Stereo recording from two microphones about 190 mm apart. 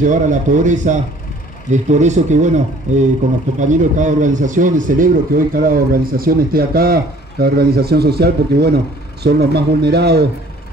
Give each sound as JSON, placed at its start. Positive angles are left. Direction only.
{"t": 0.0, "sound": "speech", "side_deg": -40}